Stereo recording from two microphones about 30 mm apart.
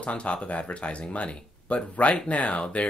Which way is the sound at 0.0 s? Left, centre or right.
Left.